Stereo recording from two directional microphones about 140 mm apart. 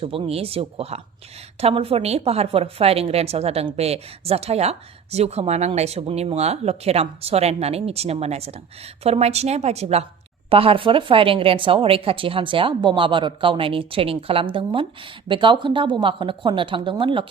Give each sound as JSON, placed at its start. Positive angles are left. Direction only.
{"t": 0.0, "sound": "a woman's voice", "side_deg": -40}